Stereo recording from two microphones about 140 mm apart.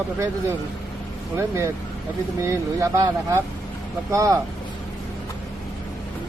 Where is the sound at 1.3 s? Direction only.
20° right (ahead or behind).